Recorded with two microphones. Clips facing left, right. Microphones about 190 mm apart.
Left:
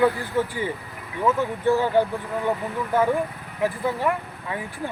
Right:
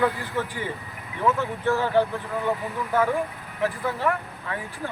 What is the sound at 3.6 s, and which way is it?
Speech, 15° left (ahead or behind).